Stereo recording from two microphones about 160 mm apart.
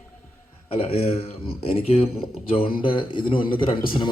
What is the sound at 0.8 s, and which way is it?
A man's voice, 35° left (ahead or behind).